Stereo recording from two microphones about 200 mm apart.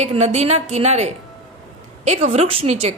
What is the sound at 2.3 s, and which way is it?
Speech, 30° right (ahead or behind).